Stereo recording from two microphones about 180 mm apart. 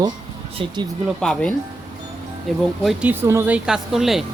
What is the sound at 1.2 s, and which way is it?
Speech, 5° left (ahead or behind).